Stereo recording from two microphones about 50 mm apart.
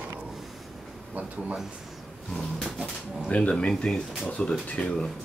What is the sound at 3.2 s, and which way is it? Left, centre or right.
Speech, left.